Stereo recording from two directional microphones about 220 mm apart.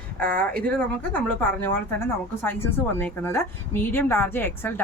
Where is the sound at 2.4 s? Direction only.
10° left (ahead or behind).